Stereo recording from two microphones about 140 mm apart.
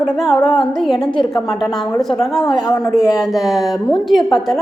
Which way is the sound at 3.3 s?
Centre (ahead or behind).